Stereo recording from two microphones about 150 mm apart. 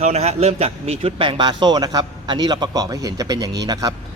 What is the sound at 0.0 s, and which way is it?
A man's voice, 45° right (ahead or behind).